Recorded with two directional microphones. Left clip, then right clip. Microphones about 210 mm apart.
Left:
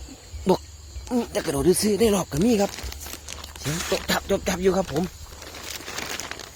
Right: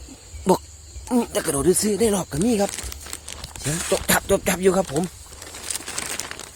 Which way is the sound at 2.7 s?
55° right (ahead or behind).